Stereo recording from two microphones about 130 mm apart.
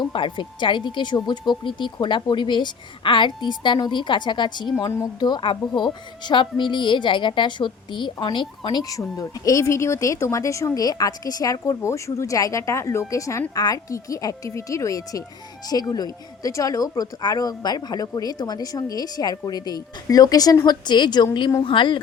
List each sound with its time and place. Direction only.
0.0 s speech: 40° left (ahead or behind)
4.8 s a woman's voice: 20° left (ahead or behind)
5.2 s a woman's voice: 35° left (ahead or behind)